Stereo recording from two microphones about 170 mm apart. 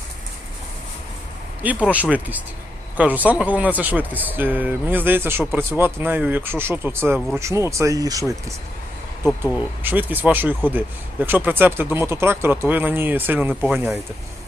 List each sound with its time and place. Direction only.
1.9 s speech: 10° right (ahead or behind)